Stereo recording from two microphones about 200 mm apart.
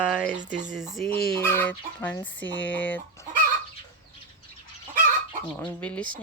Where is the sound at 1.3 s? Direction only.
10° left (ahead or behind).